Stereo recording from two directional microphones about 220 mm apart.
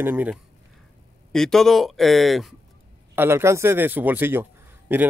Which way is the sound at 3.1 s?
10° right (ahead or behind).